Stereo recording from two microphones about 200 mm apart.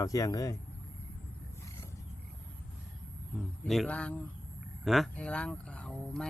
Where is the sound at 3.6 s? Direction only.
Centre (ahead or behind).